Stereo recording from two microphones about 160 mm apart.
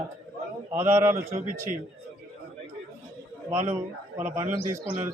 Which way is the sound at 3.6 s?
15° right (ahead or behind).